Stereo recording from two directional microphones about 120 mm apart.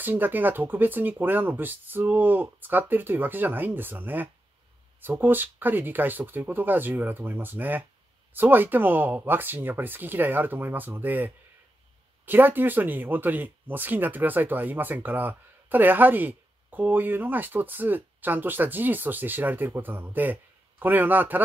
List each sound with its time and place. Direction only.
0.0 s speech: 15° right (ahead or behind)